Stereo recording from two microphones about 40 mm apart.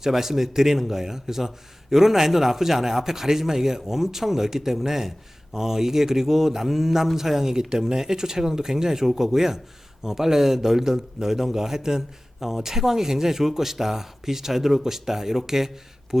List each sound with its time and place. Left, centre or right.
0.0 s speech: centre